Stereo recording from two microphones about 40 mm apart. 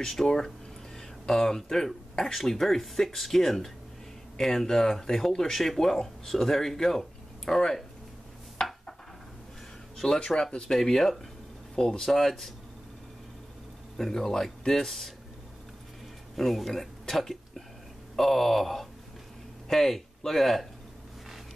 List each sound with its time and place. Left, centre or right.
0.0 s speech: centre
8.6 s dishes: centre
9.9 s speech: centre
11.8 s speech: centre
12.1 s speech: centre
13.9 s speech: centre
16.3 s speech: centre
17.1 s a sound: centre
18.1 s speech: centre